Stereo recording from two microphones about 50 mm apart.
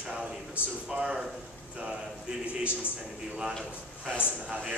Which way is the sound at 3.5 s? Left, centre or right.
Centre.